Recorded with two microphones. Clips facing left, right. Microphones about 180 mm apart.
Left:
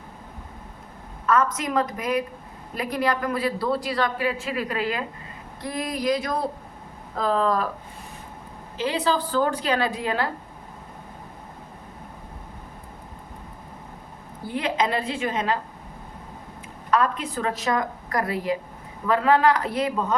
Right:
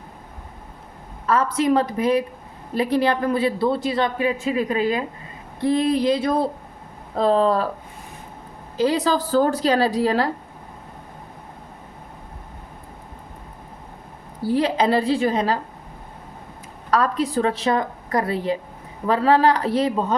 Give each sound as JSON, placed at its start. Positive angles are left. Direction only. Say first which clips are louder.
{"t": 1.3, "sound": "a man's voice", "louder": "right 4 dB", "side_deg": -30}
{"t": 8.8, "sound": "a woman's voice", "louder": "right 4 dB", "side_deg": -40}
{"t": 14.4, "sound": "a woman's voice", "louder": "right 6 dB", "side_deg": -35}
{"t": 16.9, "sound": "a man's voice", "louder": "right 3 dB", "side_deg": -35}